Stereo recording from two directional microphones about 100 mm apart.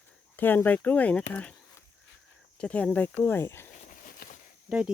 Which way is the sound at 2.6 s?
10° left (ahead or behind).